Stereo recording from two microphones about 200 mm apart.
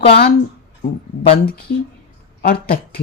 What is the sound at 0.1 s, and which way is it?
Speech, 50° left (ahead or behind).